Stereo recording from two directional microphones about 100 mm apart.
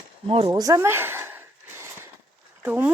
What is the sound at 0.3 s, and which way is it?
Speech, 75° right (ahead or behind).